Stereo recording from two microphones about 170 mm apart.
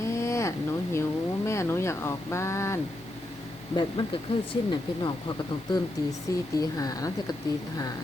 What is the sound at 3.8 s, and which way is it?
Speech, 30° left (ahead or behind).